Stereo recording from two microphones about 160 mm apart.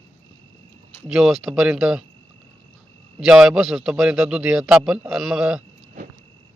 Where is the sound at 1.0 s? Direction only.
Centre (ahead or behind).